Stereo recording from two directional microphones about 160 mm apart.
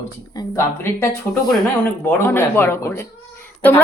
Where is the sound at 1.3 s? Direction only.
Centre (ahead or behind).